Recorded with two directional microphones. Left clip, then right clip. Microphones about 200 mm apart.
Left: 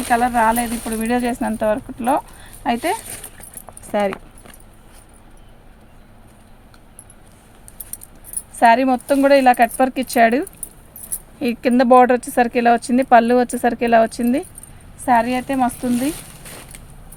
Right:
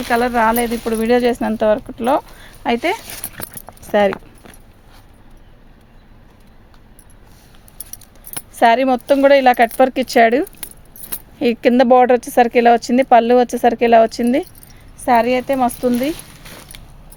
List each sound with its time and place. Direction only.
0.1 s speech: 50° right (ahead or behind)
8.5 s speech: 45° right (ahead or behind)
15.0 s speech: 45° right (ahead or behind)